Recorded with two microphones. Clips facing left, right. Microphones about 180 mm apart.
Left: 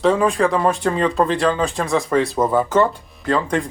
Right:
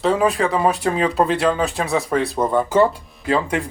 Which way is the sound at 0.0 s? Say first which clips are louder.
Left 2 dB; 5° right (ahead or behind).